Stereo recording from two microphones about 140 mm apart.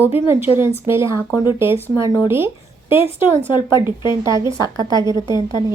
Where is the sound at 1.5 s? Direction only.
15° right (ahead or behind).